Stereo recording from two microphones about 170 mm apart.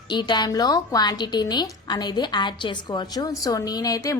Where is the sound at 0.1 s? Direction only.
25° left (ahead or behind).